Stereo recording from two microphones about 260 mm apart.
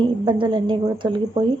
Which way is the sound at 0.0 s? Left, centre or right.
Centre.